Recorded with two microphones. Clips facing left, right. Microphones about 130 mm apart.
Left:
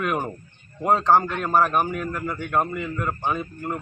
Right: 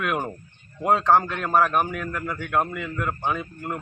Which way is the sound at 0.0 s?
Centre (ahead or behind).